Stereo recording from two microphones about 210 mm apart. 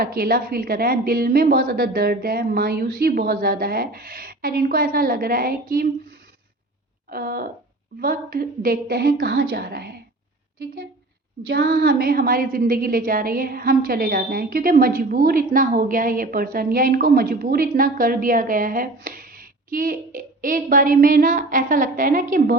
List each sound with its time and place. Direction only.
0.0 s a woman's voice: 45° right (ahead or behind)
7.1 s a woman's voice: 45° right (ahead or behind)
11.4 s a woman's voice: 45° right (ahead or behind)